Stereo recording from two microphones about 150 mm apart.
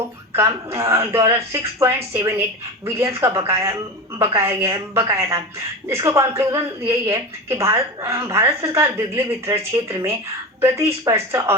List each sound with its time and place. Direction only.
0.3 s a woman's voice: 20° right (ahead or behind)